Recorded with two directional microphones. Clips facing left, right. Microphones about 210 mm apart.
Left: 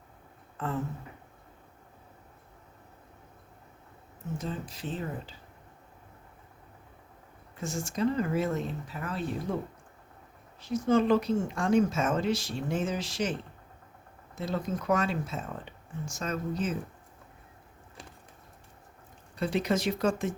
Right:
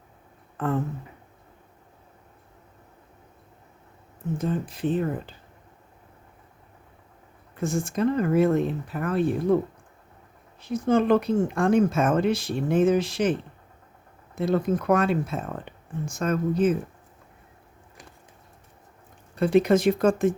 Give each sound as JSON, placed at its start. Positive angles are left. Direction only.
{"t": 0.5, "sound": "a sound", "side_deg": -55}
{"t": 4.4, "sound": "speech", "side_deg": -55}
{"t": 7.6, "sound": "speech", "side_deg": -55}
{"t": 10.6, "sound": "speech", "side_deg": -55}
{"t": 14.3, "sound": "speech", "side_deg": -55}
{"t": 19.4, "sound": "speech", "side_deg": -55}